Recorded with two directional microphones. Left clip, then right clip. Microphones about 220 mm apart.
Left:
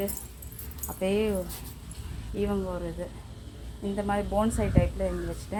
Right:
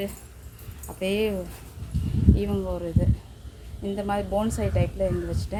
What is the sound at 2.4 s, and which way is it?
Speech, 10° right (ahead or behind).